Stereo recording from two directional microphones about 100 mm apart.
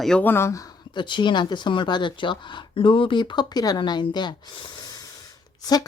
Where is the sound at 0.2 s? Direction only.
20° left (ahead or behind).